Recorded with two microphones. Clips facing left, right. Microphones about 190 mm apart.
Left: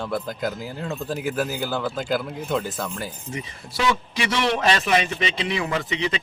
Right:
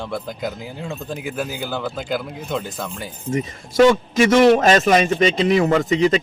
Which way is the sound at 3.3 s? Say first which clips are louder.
Right 15 dB; 45° right (ahead or behind).